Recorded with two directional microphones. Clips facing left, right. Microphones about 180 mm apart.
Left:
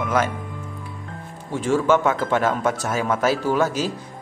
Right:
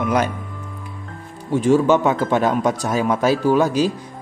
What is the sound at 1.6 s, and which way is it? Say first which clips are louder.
Speech: right 4 dB; 15° right (ahead or behind).